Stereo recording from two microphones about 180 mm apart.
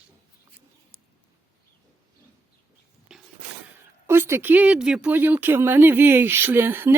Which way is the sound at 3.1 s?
5° right (ahead or behind).